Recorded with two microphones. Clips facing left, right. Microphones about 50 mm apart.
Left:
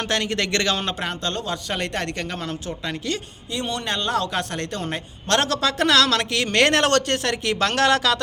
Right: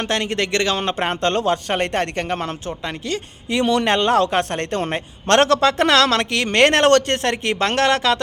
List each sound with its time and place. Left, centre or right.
0.0 s a man's voice: right
0.9 s a man's voice: right
1.6 s speech: right
3.5 s speech: right
4.3 s a man's voice: right